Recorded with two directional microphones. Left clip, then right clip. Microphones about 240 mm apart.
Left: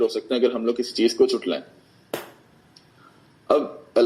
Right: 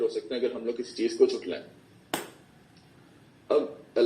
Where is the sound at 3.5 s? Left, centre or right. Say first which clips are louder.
Left 5 dB; left.